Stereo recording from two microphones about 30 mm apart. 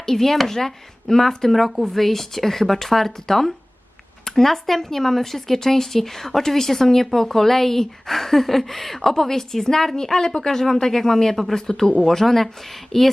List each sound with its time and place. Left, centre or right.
0.0 s speech: centre